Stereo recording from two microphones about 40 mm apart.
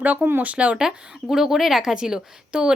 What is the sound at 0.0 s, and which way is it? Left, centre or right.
Speech, right.